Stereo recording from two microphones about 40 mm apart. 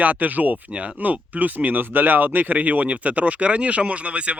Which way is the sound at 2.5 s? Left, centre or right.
Right.